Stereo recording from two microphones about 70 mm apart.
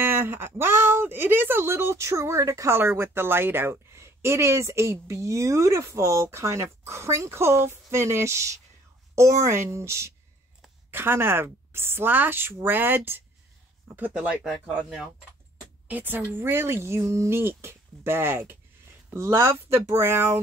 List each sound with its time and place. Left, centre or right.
0.0 s a woman's voice: right; by 15.0 s centre
15.9 s speech: right